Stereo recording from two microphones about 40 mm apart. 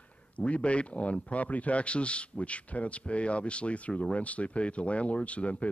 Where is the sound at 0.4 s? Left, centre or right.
Left.